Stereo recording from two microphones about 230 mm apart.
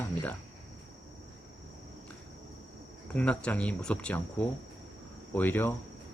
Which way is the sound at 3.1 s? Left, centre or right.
Centre.